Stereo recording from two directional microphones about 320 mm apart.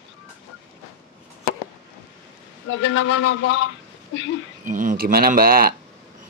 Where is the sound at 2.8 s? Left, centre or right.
Left.